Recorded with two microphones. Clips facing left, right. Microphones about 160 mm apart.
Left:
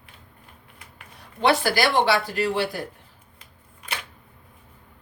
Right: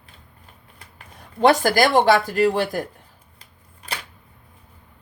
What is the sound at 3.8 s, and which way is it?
Camera, 35° right (ahead or behind).